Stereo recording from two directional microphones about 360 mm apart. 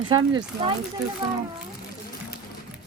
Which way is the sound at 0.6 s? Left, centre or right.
Centre.